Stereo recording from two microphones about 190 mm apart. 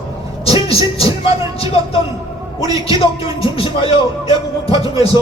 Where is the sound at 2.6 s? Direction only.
20° right (ahead or behind).